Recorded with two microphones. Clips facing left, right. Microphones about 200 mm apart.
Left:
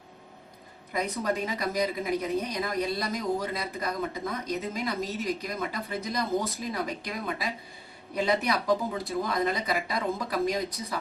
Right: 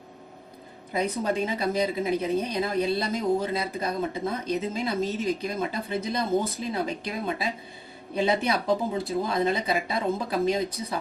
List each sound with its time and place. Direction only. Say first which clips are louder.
0.9 s a woman's voice: right 3 dB; 30° right (ahead or behind)